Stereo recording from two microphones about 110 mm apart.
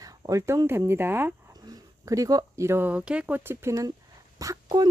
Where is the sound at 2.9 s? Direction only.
10° right (ahead or behind).